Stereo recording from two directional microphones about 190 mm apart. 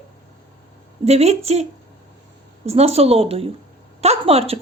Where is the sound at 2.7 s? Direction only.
35° right (ahead or behind).